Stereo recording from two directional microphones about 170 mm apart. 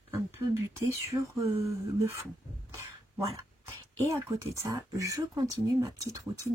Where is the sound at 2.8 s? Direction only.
20° right (ahead or behind).